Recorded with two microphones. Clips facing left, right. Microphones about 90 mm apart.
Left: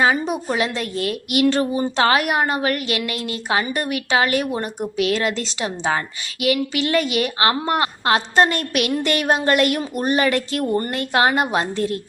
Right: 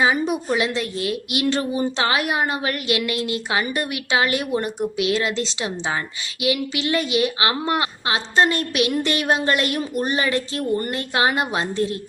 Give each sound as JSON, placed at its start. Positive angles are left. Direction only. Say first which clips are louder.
{"t": 0.0, "sound": "a woman's voice", "louder": "left 1 dB", "side_deg": 45}